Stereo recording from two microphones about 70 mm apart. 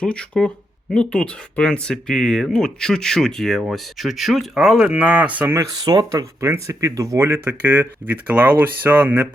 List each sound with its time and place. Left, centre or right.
0.0 s speech: centre
5.8 s speech: right
6.1 s speech: right
7.3 s speech: right